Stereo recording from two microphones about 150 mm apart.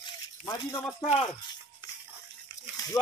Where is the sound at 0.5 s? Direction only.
25° left (ahead or behind).